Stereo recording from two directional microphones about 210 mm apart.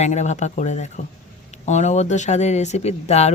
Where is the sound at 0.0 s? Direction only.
35° left (ahead or behind).